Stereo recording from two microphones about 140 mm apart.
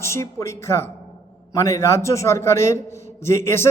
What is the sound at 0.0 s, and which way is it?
A man's voice, 20° left (ahead or behind).